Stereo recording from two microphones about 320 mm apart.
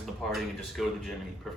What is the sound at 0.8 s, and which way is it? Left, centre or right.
Speech, centre.